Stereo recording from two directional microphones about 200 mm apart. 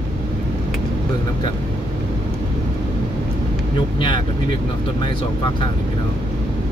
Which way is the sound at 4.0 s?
25° left (ahead or behind).